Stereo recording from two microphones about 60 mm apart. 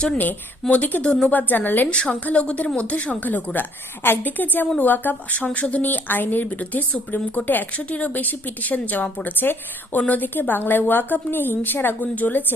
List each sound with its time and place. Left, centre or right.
0.7 s a woman's voice: left
1.9 s a woman's voice: centre